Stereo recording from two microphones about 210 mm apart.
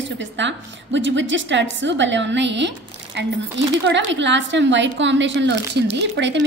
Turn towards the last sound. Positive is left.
turn(degrees=-60)  # may be behind; listen again after turning